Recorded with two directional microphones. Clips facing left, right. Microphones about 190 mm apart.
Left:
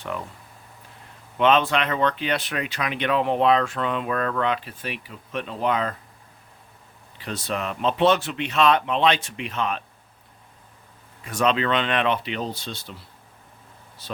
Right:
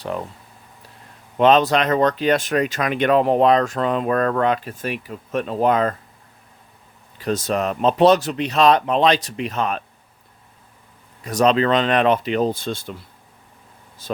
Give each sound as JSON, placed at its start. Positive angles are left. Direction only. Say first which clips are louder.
{"t": 1.4, "sound": "speech", "louder": "right 5 dB", "side_deg": -40}
{"t": 7.2, "sound": "speech", "louder": "right 7 dB", "side_deg": -45}
{"t": 11.2, "sound": "speech", "louder": "right 6 dB", "side_deg": -40}
{"t": 14.0, "sound": "speech", "louder": "right 7 dB", "side_deg": -45}